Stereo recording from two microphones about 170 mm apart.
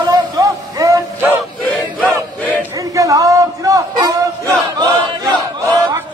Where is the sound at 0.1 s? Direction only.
20° right (ahead or behind).